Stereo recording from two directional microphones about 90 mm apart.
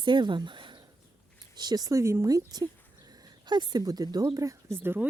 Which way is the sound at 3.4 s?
55° right (ahead or behind).